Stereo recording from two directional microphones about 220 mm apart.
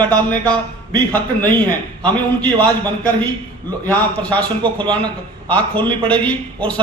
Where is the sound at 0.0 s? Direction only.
5° left (ahead or behind).